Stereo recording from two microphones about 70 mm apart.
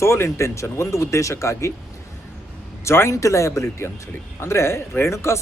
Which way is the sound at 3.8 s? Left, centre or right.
Left.